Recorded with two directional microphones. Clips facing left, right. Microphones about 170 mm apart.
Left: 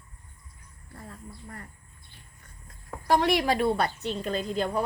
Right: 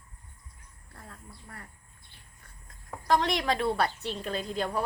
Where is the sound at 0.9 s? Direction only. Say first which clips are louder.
Left 5 dB; 5° left (ahead or behind).